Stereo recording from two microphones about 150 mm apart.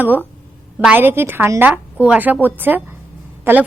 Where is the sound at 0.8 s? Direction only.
10° right (ahead or behind).